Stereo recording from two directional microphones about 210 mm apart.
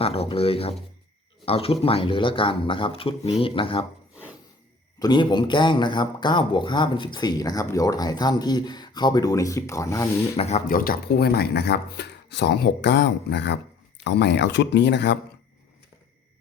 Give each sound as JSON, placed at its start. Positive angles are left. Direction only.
{"t": 0.0, "sound": "speech", "side_deg": 30}
{"t": 4.9, "sound": "speech", "side_deg": 20}
{"t": 10.3, "sound": "speech", "side_deg": 30}